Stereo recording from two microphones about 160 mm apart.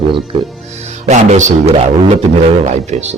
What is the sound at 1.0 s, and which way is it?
A man's voice, 50° right (ahead or behind).